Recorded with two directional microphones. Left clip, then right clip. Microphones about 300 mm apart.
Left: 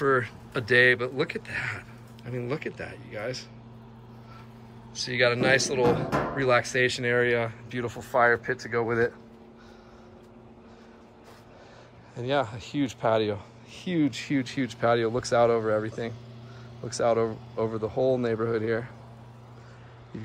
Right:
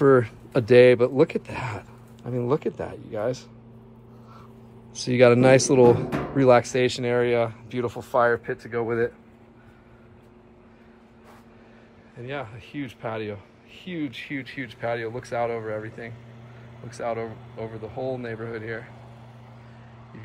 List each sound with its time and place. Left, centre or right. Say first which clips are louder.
0.0 s speech: right 6 dB; centre
4.9 s speech: right 7 dB; centre
12.2 s speech: left 7 dB; centre